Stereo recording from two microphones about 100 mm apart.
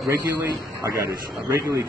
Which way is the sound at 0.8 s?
30° right (ahead or behind).